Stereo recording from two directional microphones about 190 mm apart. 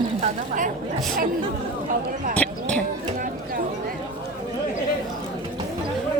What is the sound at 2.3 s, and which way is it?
Speech, 5° left (ahead or behind).